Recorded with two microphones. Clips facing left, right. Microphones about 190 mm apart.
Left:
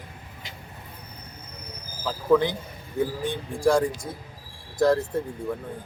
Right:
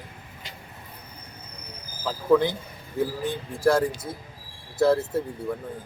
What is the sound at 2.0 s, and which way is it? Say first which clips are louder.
Speech: even; 5° right (ahead or behind).